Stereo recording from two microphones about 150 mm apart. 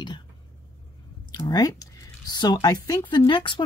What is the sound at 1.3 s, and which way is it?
Speech, 25° left (ahead or behind).